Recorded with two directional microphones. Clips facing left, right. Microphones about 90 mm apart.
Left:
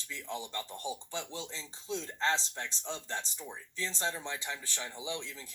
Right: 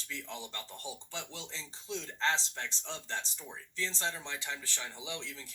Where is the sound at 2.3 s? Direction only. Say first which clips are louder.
Left 1 dB; 20° left (ahead or behind).